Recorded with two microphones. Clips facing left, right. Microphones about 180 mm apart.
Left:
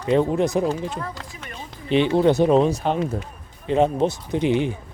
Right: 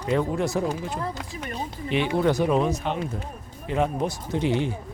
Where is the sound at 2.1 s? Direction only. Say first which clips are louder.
Left 5 dB; 25° left (ahead or behind).